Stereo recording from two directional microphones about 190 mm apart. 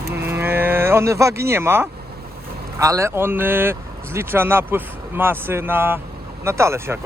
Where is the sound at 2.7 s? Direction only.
15° right (ahead or behind).